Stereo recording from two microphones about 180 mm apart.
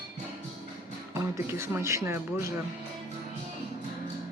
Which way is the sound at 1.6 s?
15° right (ahead or behind).